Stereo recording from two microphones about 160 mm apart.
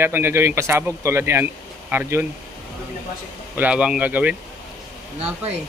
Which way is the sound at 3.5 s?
5° right (ahead or behind).